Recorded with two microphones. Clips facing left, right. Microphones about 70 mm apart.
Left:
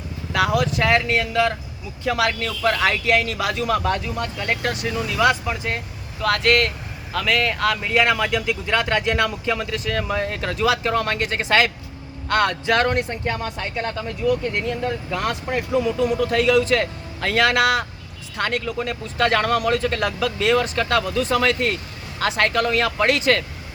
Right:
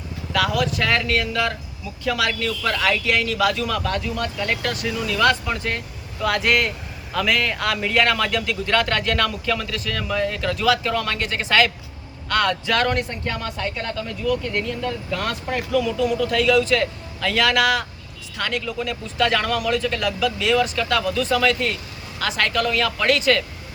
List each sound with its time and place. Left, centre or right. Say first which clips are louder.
0.3 s vehicle: left 1 dB; left
2.0 s speech: left 1 dB; left
5.2 s a man's voice: even; centre
6.2 s a man's voice: left 1 dB; centre; by 23.4 s left